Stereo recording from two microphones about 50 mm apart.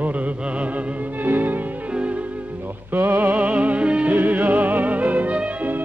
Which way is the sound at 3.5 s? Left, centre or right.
Right.